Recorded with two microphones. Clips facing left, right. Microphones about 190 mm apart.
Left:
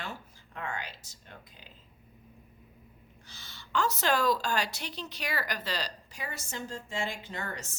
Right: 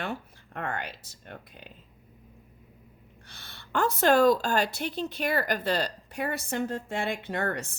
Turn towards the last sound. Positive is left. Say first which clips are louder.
# right 9 dB
turn(degrees=-55)  # may be behind; listen again after turning